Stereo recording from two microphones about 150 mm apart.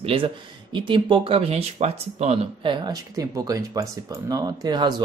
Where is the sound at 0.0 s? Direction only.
35° right (ahead or behind).